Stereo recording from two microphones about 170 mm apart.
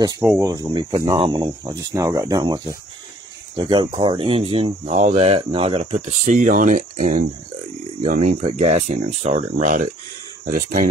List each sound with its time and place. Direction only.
0.2 s speech: 10° right (ahead or behind)
0.5 s speech: 20° right (ahead or behind); by 10.9 s 55° right (ahead or behind)